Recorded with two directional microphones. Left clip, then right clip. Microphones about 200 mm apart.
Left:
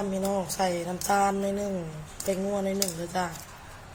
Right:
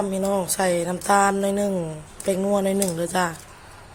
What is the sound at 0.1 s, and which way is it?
A woman's voice, 60° right (ahead or behind).